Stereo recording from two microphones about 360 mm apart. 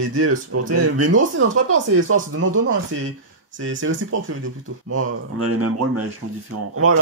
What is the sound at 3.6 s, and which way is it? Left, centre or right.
A man's voice, right.